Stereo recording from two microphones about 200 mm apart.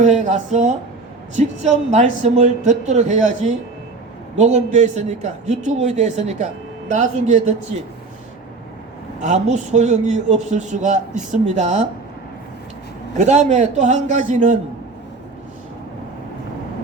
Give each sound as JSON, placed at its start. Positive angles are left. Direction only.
{"t": 0.0, "sound": "a woman's voice", "side_deg": -35}
{"t": 9.2, "sound": "a woman's voice", "side_deg": -35}
{"t": 13.1, "sound": "a woman's voice", "side_deg": -35}